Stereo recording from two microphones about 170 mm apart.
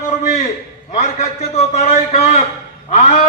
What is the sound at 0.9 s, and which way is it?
A man's voice, 40° left (ahead or behind).